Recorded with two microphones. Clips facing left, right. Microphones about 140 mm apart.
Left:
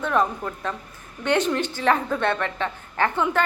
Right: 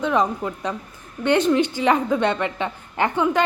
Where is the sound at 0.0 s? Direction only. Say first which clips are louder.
Right 2 dB; 15° right (ahead or behind).